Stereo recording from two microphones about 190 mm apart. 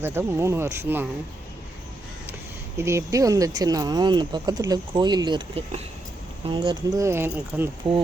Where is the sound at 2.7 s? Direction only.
15° right (ahead or behind).